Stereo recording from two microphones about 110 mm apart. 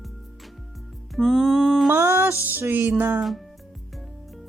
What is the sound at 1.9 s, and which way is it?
Speech, 20° right (ahead or behind).